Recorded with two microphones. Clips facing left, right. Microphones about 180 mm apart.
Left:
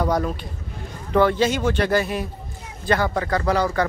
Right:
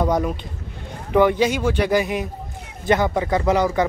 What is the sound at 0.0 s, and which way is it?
Speech, 15° right (ahead or behind).